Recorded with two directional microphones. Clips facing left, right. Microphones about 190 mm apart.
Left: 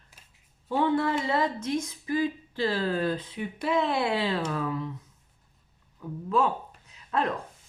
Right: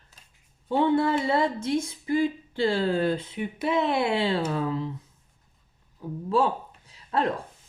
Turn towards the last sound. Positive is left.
turn(degrees=-30)  # may be behind; listen again after turning